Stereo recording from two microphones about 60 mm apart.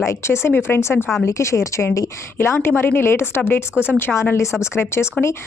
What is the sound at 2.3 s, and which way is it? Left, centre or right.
Speech, left.